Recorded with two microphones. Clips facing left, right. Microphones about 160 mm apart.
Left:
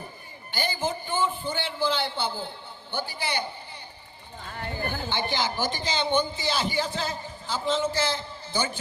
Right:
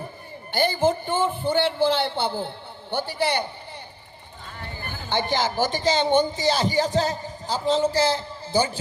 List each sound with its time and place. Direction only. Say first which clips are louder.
0.5 s a man's voice: right 8 dB; 60° right (ahead or behind)
4.5 s a sound: left 5 dB; 50° left (ahead or behind)
5.1 s speech: right 7 dB; 45° right (ahead or behind)